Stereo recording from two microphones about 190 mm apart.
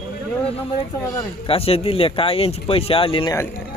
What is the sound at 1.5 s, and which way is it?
Speech, 30° left (ahead or behind).